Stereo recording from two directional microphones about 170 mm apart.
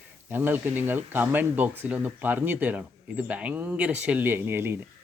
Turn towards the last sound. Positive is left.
turn(degrees=-15)  # may be behind; listen again after turning